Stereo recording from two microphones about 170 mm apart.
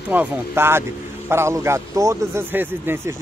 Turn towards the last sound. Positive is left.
turn(degrees=-15)  # may be behind; listen again after turning